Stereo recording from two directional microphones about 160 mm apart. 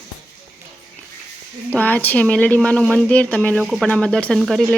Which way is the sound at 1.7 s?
10° left (ahead or behind).